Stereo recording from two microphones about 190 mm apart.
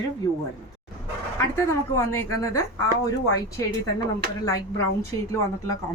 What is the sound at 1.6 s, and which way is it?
Speech, 15° left (ahead or behind).